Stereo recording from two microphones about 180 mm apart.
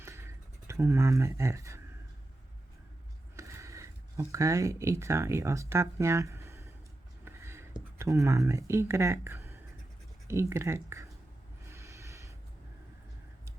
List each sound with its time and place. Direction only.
0.7 s speech: 15° right (ahead or behind)
3.3 s speech: 15° right (ahead or behind)
7.3 s a sound: 15° right (ahead or behind)
10.2 s speech: 15° right (ahead or behind)
11.7 s snort: 15° right (ahead or behind)